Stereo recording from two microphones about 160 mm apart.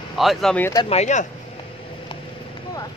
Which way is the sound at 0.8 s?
45° left (ahead or behind).